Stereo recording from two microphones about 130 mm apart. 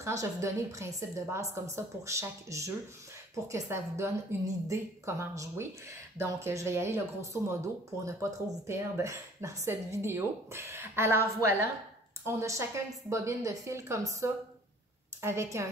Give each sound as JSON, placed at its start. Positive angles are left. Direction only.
{"t": 0.2, "sound": "speech", "side_deg": -25}